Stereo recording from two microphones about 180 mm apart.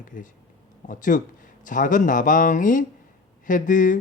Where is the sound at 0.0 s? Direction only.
45° left (ahead or behind).